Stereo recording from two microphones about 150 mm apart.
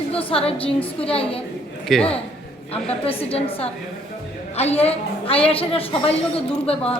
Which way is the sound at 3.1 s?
40° left (ahead or behind).